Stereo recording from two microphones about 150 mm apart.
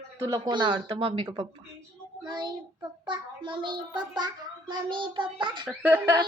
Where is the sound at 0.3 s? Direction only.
30° right (ahead or behind).